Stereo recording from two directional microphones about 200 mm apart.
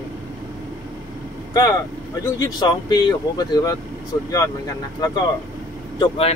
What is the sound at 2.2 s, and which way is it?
Speech, 20° left (ahead or behind).